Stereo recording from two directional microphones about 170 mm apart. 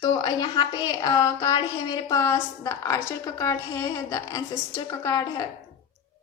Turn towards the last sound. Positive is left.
turn(degrees=20)  # may be behind; listen again after turning